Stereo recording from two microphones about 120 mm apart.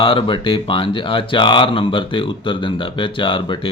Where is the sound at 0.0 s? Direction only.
45° left (ahead or behind).